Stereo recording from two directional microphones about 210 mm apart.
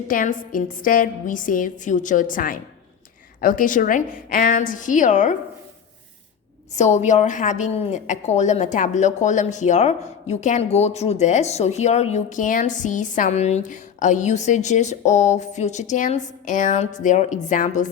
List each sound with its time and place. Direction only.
0.1 s a woman's voice: 40° left (ahead or behind)
6.7 s a woman's voice: 35° left (ahead or behind)